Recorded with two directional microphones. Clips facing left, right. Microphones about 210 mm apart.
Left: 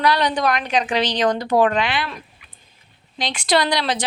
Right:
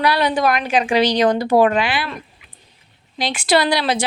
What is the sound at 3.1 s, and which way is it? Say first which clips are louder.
Speech: right 2 dB; 5° right (ahead or behind).